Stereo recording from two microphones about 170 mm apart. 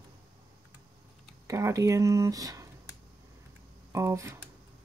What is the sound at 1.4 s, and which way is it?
Speech, 20° right (ahead or behind).